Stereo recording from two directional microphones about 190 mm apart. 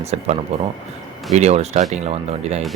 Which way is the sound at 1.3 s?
35° right (ahead or behind).